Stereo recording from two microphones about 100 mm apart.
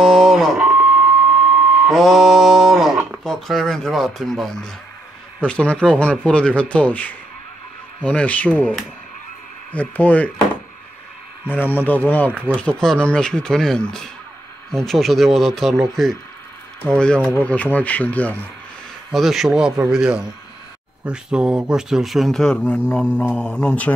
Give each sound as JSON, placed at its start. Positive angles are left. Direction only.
{"t": 0.0, "sound": "a sound", "side_deg": 5}
{"t": 0.6, "sound": "a sound", "side_deg": -15}
{"t": 1.9, "sound": "a man's voice", "side_deg": 0}
{"t": 9.7, "sound": "speech", "side_deg": 15}
{"t": 11.7, "sound": "a man's voice", "side_deg": 20}
{"t": 19.1, "sound": "a man's voice", "side_deg": 0}